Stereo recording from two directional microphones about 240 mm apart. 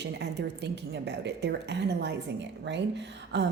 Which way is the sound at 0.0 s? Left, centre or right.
Right.